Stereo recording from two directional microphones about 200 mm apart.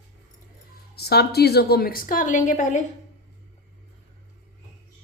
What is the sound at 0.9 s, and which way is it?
A woman's voice, 55° left (ahead or behind).